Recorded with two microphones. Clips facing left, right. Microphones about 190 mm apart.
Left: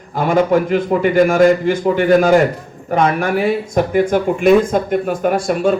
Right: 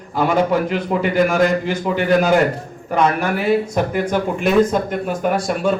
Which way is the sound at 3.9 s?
50° left (ahead or behind).